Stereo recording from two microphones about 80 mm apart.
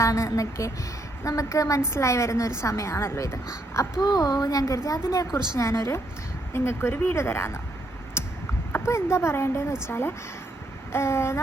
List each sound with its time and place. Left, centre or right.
0.0 s a woman's voice: left
4.0 s a woman's voice: left
8.7 s a woman's voice: left